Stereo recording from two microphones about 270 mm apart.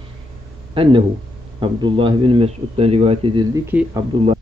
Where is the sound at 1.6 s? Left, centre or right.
Centre.